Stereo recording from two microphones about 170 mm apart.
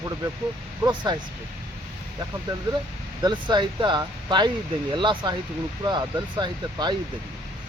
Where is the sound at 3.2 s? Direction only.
25° right (ahead or behind).